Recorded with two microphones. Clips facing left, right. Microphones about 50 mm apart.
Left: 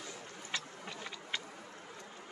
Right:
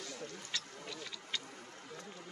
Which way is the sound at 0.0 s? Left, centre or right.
Left.